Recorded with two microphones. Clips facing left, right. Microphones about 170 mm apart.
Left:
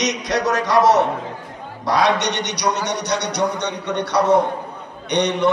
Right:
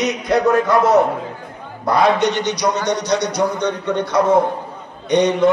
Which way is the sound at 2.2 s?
75° left (ahead or behind).